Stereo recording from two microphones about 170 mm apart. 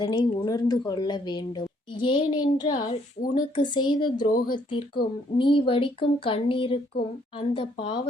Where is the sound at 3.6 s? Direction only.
25° left (ahead or behind).